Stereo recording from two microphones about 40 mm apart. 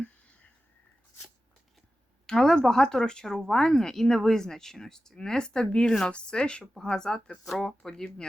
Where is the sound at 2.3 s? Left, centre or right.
Centre.